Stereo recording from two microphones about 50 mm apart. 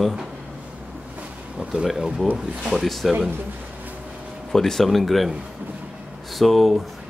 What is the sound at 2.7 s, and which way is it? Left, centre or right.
Speech, centre.